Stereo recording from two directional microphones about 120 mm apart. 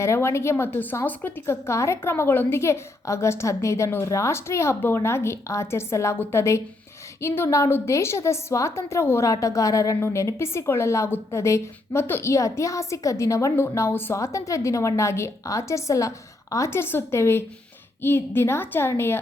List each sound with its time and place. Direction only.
0.0 s a woman's voice: 20° left (ahead or behind)